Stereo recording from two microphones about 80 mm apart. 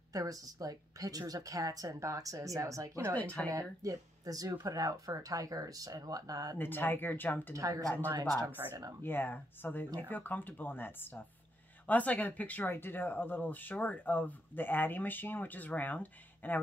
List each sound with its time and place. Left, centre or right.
0.1 s speech: right
3.2 s speech: centre
3.4 s speech: right
6.6 s speech: left
7.5 s speech: right
9.0 s speech: left
11.9 s speech: centre